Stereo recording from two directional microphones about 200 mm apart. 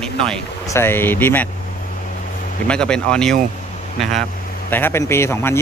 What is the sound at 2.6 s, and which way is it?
Speech, 5° left (ahead or behind).